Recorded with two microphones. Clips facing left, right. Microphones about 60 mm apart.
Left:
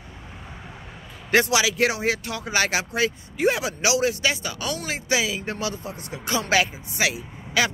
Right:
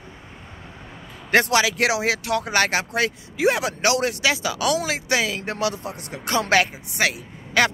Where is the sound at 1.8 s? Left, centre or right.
Right.